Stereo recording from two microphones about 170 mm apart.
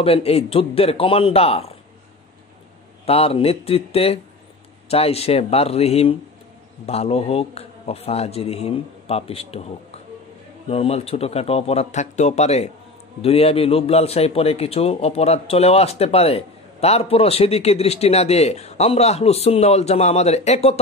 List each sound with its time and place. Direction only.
0.0 s a man's voice: 35° left (ahead or behind)
3.1 s a man's voice: 35° left (ahead or behind)
10.7 s a man's voice: 35° left (ahead or behind)